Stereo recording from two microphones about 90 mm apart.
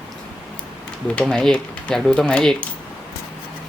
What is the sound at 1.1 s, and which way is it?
Speech, 5° left (ahead or behind).